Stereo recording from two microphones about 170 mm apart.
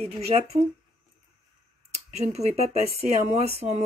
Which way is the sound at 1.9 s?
40° right (ahead or behind).